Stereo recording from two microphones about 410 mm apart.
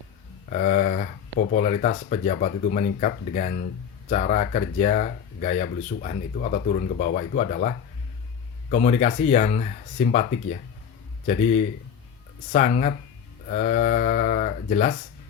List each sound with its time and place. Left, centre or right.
0.5 s speech: centre
8.7 s speech: centre
12.5 s speech: centre